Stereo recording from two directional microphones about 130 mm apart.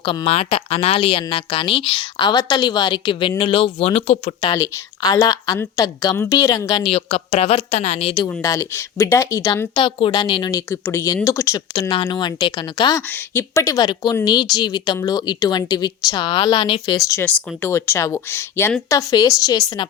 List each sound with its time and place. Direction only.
0.3 s a woman's voice: 50° left (ahead or behind)
4.5 s speech: 30° left (ahead or behind)
6.9 s a woman's voice: 50° left (ahead or behind)
8.4 s speech: 25° left (ahead or behind)
9.7 s speech: 40° left (ahead or behind)
10.7 s speech: 20° left (ahead or behind)
11.7 s speech: 40° left (ahead or behind)
13.1 s speech: 20° left (ahead or behind); by 17.1 s 35° left (ahead or behind)
17.1 s speech: 20° left (ahead or behind)